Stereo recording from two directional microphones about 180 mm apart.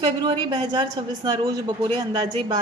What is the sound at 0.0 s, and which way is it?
A woman's voice, 25° right (ahead or behind).